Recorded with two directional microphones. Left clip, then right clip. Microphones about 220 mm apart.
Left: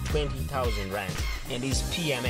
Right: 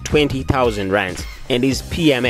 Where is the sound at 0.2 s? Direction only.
45° right (ahead or behind).